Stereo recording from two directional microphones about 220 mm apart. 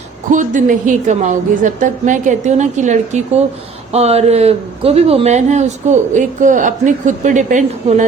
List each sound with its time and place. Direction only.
0.3 s a man's voice: 35° right (ahead or behind)